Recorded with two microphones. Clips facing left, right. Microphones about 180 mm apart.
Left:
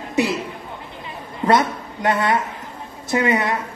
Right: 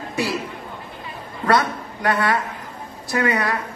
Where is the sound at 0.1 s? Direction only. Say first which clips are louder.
Left 4 dB; 20° left (ahead or behind).